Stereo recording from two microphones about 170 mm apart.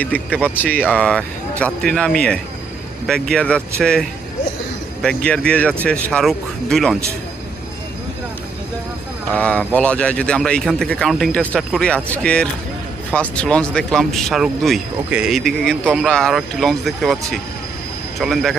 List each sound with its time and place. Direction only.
0.0 s a man's voice: 10° left (ahead or behind)
5.0 s a man's voice: 5° left (ahead or behind)
9.3 s a man's voice: 5° left (ahead or behind)